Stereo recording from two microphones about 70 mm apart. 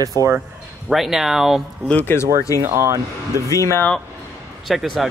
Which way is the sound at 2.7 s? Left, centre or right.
Right.